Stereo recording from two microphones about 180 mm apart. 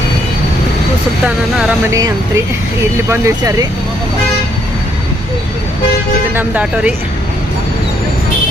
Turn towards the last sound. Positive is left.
turn(degrees=-10)  # may be behind; listen again after turning